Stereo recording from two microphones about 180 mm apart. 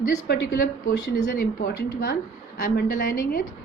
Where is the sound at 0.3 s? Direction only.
50° left (ahead or behind).